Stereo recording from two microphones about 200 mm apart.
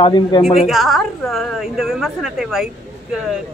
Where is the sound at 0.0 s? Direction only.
20° left (ahead or behind).